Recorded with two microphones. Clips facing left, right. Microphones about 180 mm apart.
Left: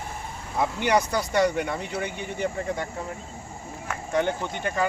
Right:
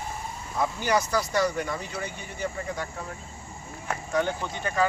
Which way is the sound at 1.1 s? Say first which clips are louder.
Left 2 dB; 20° left (ahead or behind).